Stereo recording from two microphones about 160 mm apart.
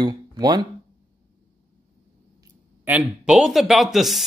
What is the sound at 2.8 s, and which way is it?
Speech, 10° right (ahead or behind).